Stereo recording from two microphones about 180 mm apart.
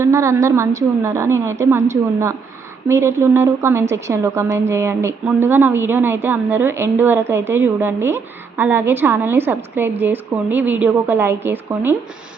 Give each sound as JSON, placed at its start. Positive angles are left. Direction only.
{"t": 0.0, "sound": "a woman's voice", "side_deg": -15}